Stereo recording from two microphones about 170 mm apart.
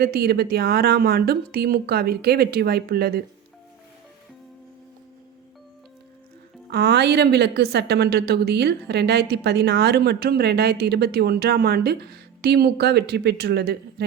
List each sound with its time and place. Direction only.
0.0 s speech: 65° right (ahead or behind)
6.7 s a woman's voice: 75° right (ahead or behind)